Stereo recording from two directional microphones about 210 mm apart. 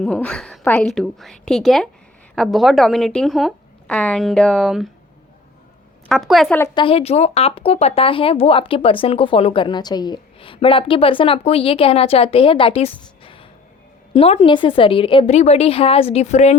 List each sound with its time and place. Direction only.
0.0 s speech: 5° left (ahead or behind)
6.1 s speech: centre (ahead or behind)
6.6 s speech: 25° left (ahead or behind)